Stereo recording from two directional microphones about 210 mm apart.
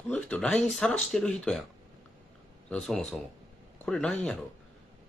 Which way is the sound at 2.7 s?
Centre (ahead or behind).